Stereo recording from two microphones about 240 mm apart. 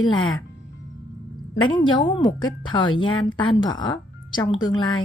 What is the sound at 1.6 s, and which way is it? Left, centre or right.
A woman's voice, centre.